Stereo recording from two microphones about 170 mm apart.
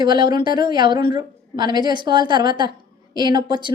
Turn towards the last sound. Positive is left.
turn(degrees=-25)  # may be behind; listen again after turning